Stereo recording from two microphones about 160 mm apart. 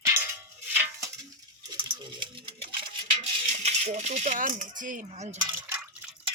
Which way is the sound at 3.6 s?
45° right (ahead or behind).